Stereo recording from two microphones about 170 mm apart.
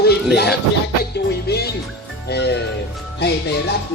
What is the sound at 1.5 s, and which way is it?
Music, 70° left (ahead or behind).